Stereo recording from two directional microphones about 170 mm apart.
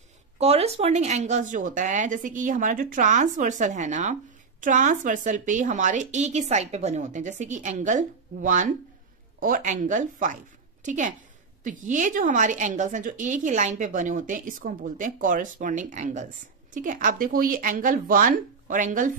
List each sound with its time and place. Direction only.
0.4 s speech: 35° right (ahead or behind)